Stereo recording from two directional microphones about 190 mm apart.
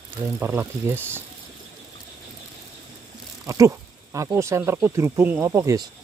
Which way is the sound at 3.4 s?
15° right (ahead or behind).